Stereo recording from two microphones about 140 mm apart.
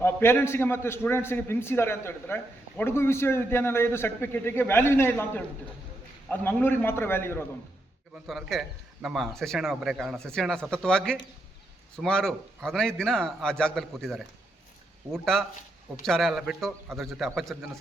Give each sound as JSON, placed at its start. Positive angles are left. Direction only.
{"t": 0.0, "sound": "a man's voice", "side_deg": 15}
{"t": 8.3, "sound": "a man's voice", "side_deg": 0}